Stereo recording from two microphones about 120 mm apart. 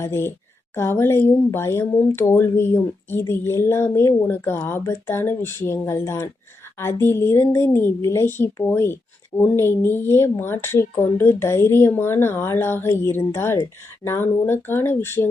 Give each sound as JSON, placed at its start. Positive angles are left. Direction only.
{"t": 0.0, "sound": "a woman's voice", "side_deg": 20}